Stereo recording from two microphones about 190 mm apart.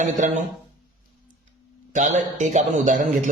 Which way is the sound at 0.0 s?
40° right (ahead or behind).